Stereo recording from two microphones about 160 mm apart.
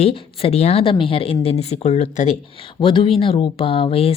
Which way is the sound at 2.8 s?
30° left (ahead or behind).